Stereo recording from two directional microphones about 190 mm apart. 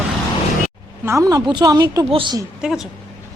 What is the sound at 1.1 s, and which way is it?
Speech, 15° right (ahead or behind).